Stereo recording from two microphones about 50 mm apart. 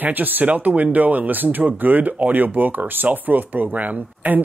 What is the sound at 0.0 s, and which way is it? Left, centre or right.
Speech, right.